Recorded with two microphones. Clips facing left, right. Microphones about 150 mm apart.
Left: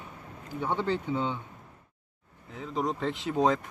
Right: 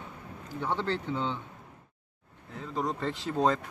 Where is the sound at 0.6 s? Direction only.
10° left (ahead or behind).